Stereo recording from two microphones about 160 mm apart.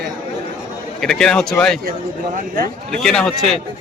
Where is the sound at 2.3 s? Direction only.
60° right (ahead or behind).